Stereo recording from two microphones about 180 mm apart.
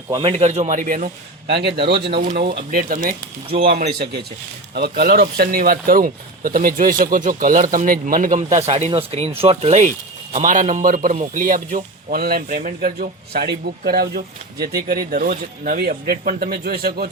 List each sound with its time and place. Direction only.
0.1 s a man's voice: 30° right (ahead or behind); by 1.1 s 50° right (ahead or behind)
1.5 s a man's voice: 65° right (ahead or behind)
2.3 s a man's voice: 50° right (ahead or behind); by 9.8 s 35° right (ahead or behind)
10.3 s a man's voice: 45° right (ahead or behind)